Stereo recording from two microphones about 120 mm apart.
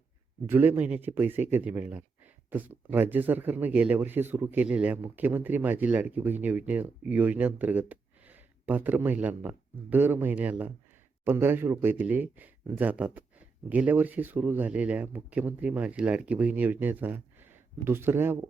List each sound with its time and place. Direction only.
0.4 s speech: 15° right (ahead or behind)